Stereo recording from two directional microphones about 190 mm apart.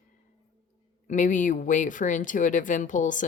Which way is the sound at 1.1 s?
40° left (ahead or behind).